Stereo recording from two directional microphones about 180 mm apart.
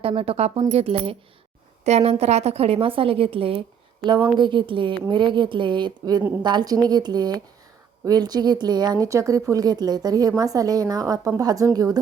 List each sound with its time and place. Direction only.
0.0 s a woman's voice: 30° right (ahead or behind)